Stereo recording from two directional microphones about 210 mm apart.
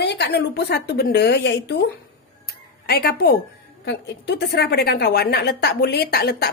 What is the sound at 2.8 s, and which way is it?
A woman's voice, 50° left (ahead or behind).